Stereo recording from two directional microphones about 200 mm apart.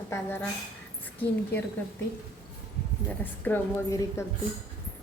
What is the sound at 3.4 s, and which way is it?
Speech, 10° left (ahead or behind).